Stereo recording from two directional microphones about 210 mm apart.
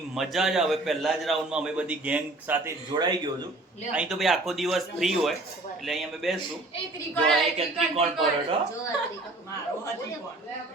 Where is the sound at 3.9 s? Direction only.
5° right (ahead or behind).